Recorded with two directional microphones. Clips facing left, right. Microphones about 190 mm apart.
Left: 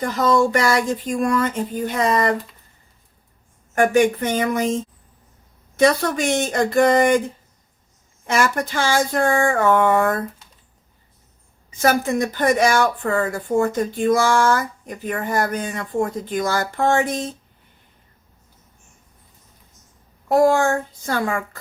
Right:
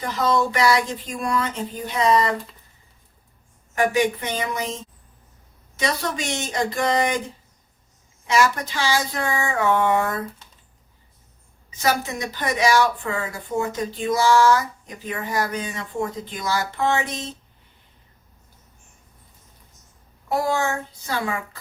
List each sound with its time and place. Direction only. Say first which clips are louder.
0.0 s speech: left 4 dB; 50° left (ahead or behind)
3.8 s speech: left 5 dB; 50° left (ahead or behind)
8.3 s speech: left 1 dB; 50° left (ahead or behind)
11.8 s speech: left 5 dB; 50° left (ahead or behind)
20.2 s speech: left 7 dB; 50° left (ahead or behind)